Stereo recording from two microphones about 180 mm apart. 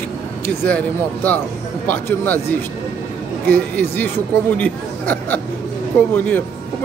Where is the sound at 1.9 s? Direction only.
10° left (ahead or behind).